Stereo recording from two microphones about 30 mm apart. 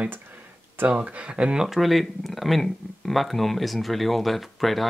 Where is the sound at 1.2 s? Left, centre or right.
Right.